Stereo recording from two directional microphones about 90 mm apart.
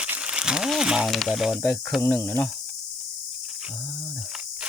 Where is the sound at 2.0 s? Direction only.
25° left (ahead or behind).